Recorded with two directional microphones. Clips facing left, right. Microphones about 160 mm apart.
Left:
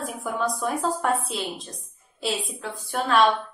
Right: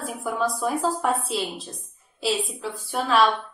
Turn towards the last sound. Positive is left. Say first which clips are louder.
# even
turn(degrees=0)  # may be behind; listen again after turning